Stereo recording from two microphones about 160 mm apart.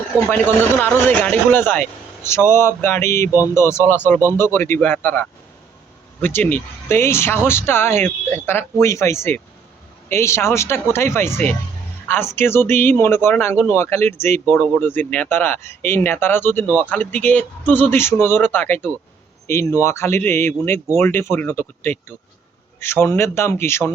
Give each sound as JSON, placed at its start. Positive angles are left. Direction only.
{"t": 0.3, "sound": "speech", "side_deg": 10}